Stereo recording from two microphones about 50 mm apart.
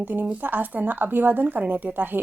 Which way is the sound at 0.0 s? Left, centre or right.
Right.